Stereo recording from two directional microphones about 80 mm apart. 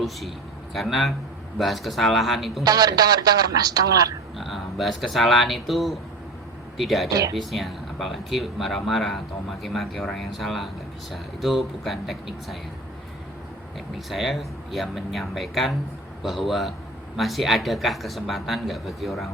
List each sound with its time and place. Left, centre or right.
0.7 s speech: centre
2.6 s speech: right
4.4 s speech: centre
7.1 s speech: right
7.3 s speech: centre
14.1 s speech: centre